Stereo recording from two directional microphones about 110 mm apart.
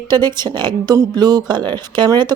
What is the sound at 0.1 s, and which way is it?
Speech, 40° right (ahead or behind).